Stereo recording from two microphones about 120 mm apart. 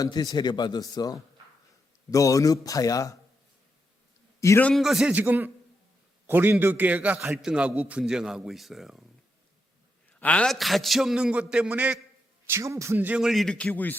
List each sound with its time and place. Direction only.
0.0 s speech: 35° left (ahead or behind)
4.4 s a sound: 25° left (ahead or behind)
4.6 s a man's voice: centre (ahead or behind)
5.1 s a man's voice: 15° right (ahead or behind)
10.2 s a man's voice: 10° left (ahead or behind); by 11.9 s 10° right (ahead or behind)
12.5 s a man's voice: 25° right (ahead or behind)
13.2 s a man's voice: centre (ahead or behind)